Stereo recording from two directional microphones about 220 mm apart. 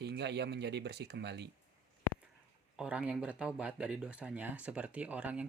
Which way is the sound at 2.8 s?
5° right (ahead or behind).